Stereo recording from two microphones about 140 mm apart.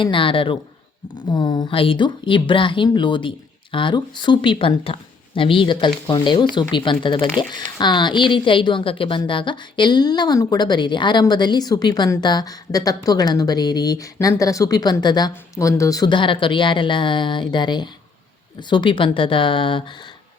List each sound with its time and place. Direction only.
0.0 s speech: 35° left (ahead or behind)